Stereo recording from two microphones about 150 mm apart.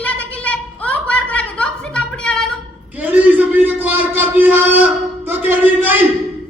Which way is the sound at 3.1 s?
10° right (ahead or behind).